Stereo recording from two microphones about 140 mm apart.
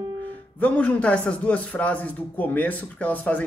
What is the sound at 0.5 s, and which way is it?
A man's voice, 10° left (ahead or behind).